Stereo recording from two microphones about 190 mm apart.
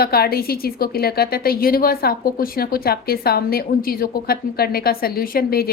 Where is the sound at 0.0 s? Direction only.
55° left (ahead or behind).